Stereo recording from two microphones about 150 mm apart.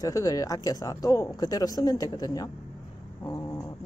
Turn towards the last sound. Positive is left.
turn(degrees=25)  # may be behind; listen again after turning